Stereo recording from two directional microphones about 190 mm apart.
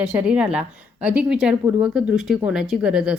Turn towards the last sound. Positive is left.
turn(degrees=-5)  # may be behind; listen again after turning